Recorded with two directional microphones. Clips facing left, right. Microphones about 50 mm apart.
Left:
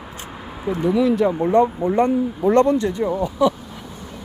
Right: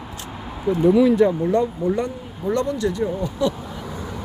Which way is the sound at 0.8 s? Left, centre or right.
Centre.